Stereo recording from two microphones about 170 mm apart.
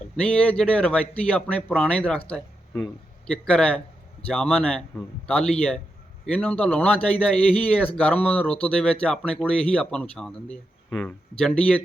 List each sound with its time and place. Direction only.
0.2 s speech: 5° left (ahead or behind)